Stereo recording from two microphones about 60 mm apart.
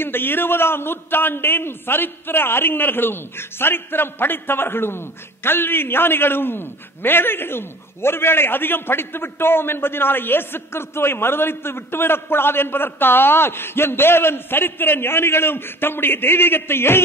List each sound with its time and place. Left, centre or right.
0.0 s a man's voice: left